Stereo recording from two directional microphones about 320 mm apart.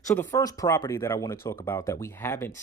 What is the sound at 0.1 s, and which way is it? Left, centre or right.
Speech, centre.